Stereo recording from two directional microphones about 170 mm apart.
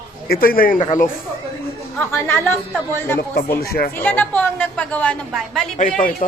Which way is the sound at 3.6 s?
65° left (ahead or behind).